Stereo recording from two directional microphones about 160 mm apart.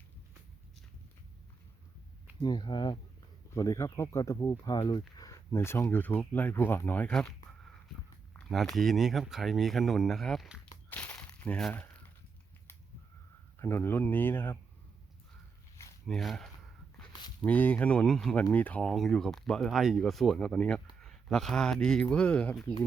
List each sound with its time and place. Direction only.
2.4 s speech: 25° left (ahead or behind); by 10.6 s centre (ahead or behind)
10.8 s a sound: 10° left (ahead or behind)
13.6 s speech: 15° left (ahead or behind)
16.0 s speech: centre (ahead or behind)
17.0 s dog: 5° left (ahead or behind)
17.4 s speech: 10° left (ahead or behind)